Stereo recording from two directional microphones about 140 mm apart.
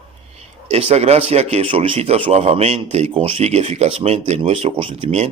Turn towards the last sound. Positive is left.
turn(degrees=-45)  # may be behind; listen again after turning